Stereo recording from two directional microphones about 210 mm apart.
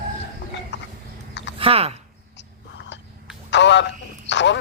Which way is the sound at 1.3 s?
55° left (ahead or behind).